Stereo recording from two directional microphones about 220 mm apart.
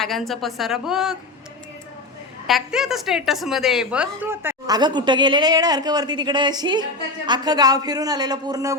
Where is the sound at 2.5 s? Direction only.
Centre (ahead or behind).